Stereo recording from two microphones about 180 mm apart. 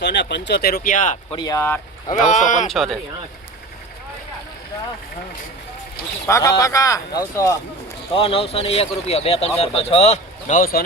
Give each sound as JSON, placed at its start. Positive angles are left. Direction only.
{"t": 0.0, "sound": "speech", "side_deg": 75}
{"t": 1.4, "sound": "speech", "side_deg": 20}
{"t": 2.1, "sound": "speech", "side_deg": 45}
{"t": 2.6, "sound": "speech", "side_deg": 0}
{"t": 6.2, "sound": "speech", "side_deg": 15}
{"t": 8.1, "sound": "speech", "side_deg": 30}